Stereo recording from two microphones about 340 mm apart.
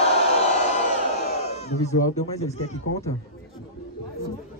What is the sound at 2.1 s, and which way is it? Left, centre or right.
Speech, centre.